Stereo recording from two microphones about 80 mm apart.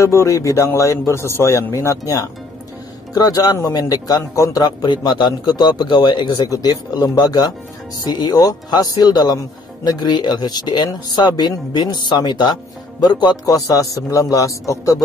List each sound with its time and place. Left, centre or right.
0.0 s a man's voice: left
4.8 s speech: left
6.5 s speech: left
13.5 s a man's voice: left